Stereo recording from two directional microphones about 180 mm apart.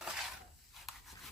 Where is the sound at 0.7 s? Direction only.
Centre (ahead or behind).